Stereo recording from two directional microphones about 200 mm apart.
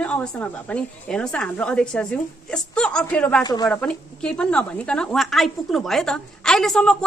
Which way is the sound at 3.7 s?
5° left (ahead or behind).